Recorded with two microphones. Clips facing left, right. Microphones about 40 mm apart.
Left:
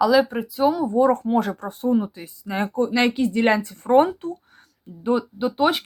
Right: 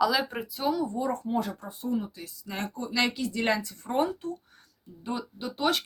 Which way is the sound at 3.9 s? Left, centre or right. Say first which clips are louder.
Left 11 dB; left.